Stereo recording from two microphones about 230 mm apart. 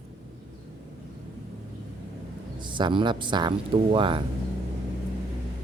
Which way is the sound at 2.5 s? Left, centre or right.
Right.